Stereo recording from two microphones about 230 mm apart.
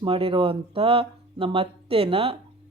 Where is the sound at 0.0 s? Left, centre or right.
Right.